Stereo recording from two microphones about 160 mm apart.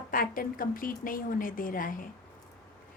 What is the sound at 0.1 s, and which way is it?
A woman's voice, 60° left (ahead or behind).